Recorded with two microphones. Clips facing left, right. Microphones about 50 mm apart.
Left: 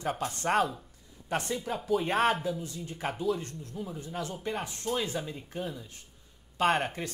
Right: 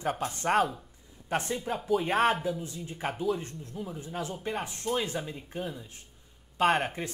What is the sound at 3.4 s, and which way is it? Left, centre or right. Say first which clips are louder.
Speech: even; right.